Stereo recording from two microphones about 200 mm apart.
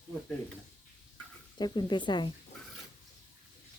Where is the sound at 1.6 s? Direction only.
20° left (ahead or behind).